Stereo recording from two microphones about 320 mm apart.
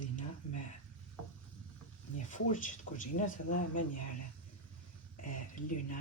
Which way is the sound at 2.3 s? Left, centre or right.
Left.